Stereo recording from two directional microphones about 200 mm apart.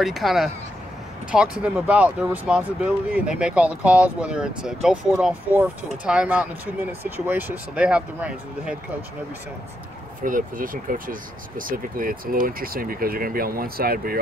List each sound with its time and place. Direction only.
0.0 s speech: centre (ahead or behind)
10.2 s speech: 45° right (ahead or behind)